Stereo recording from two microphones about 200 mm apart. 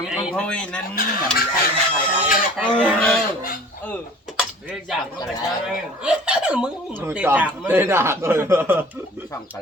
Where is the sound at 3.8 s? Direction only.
45° left (ahead or behind).